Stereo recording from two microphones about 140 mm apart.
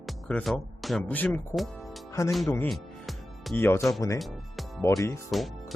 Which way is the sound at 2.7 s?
Centre (ahead or behind).